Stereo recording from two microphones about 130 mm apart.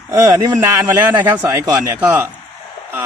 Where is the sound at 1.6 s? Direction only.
25° right (ahead or behind).